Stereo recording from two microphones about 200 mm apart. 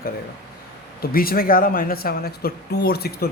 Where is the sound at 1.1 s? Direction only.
45° left (ahead or behind).